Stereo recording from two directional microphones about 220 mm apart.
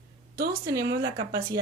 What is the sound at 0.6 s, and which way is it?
Speech, 15° right (ahead or behind).